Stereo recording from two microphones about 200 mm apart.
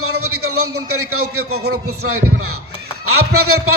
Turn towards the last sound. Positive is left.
turn(degrees=-90)